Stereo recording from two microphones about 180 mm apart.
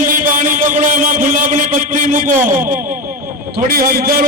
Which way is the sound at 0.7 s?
50° right (ahead or behind).